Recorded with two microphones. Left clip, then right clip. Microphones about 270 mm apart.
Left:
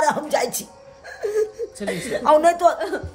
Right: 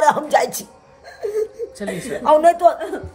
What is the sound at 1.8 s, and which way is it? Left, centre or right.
Speech, left.